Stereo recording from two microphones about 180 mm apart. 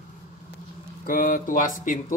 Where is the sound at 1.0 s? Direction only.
50° left (ahead or behind).